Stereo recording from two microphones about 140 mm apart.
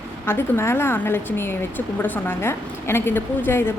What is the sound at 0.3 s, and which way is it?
A woman's voice, 15° left (ahead or behind).